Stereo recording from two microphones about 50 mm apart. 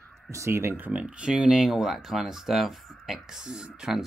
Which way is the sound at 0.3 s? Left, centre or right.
Right.